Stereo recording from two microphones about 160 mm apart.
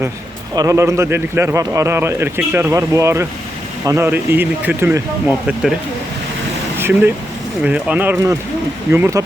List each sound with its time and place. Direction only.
0.5 s a man's voice: 20° right (ahead or behind)
6.7 s vehicle: 15° right (ahead or behind)
7.6 s a man's voice: 5° right (ahead or behind)